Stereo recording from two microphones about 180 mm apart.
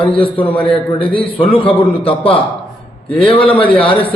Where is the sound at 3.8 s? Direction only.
30° left (ahead or behind).